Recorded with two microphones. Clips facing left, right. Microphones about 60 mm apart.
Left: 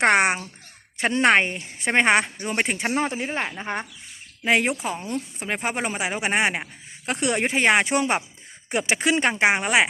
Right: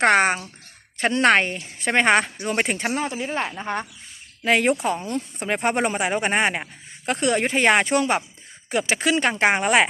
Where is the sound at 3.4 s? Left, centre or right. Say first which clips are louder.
Right 2 dB; centre.